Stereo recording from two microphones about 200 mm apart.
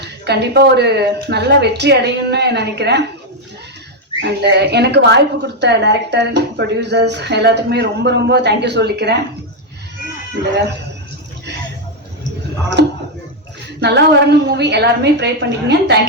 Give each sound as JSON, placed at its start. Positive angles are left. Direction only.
{"t": 0.0, "sound": "a woman's voice", "side_deg": -55}
{"t": 4.2, "sound": "a woman's voice", "side_deg": -60}
{"t": 12.8, "sound": "a sound", "side_deg": -55}
{"t": 13.8, "sound": "a woman's voice", "side_deg": -60}